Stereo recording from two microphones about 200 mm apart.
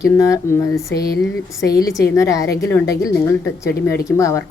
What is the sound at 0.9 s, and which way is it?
Speech, 50° left (ahead or behind).